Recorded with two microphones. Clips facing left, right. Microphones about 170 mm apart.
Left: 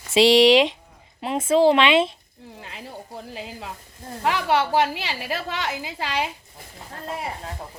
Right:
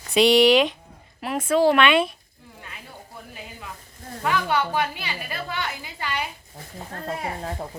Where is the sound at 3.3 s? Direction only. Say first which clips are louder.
Left 3 dB; 90° left.